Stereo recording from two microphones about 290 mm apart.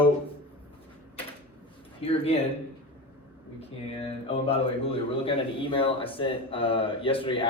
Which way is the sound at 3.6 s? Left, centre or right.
Centre.